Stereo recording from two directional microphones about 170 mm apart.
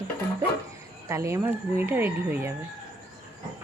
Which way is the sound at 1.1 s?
15° right (ahead or behind).